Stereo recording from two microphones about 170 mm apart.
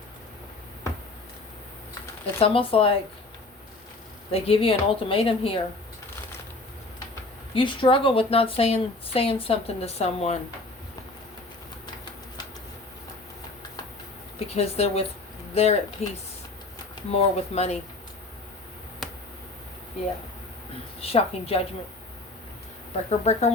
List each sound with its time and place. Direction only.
2.4 s speech: 35° left (ahead or behind)
4.3 s speech: 35° left (ahead or behind)
7.5 s speech: 30° left (ahead or behind)
14.3 s speech: 35° left (ahead or behind)
17.1 s speech: 40° left (ahead or behind)
21.0 s speech: 35° left (ahead or behind)
23.0 s speech: 40° left (ahead or behind)